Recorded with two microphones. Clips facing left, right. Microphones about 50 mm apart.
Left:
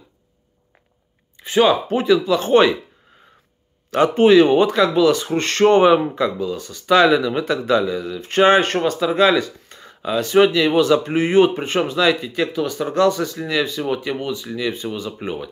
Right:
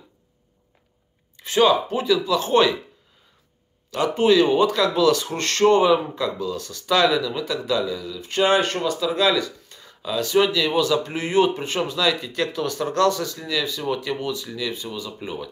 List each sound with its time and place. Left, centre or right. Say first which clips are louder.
1.3 s a sound: left 2 dB; centre
1.7 s speech: left 3 dB; left
3.9 s speech: left 6 dB; left
12.3 s speech: left 3 dB; centre